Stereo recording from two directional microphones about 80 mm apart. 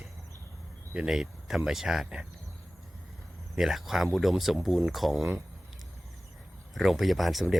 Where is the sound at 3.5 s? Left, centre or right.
Centre.